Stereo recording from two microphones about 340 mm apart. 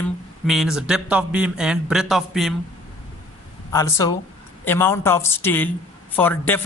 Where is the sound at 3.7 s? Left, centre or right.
Centre.